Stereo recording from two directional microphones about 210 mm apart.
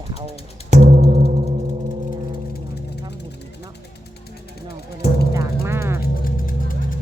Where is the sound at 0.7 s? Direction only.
35° right (ahead or behind).